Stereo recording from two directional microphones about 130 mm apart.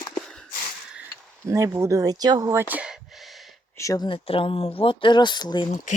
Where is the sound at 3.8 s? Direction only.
25° left (ahead or behind).